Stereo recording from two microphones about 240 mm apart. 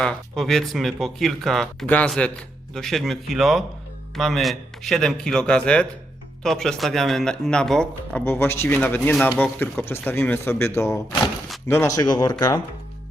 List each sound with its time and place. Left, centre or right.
0.0 s speech: centre